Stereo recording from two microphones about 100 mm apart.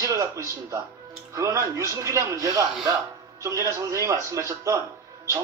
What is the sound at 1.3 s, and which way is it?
Speech, 30° right (ahead or behind).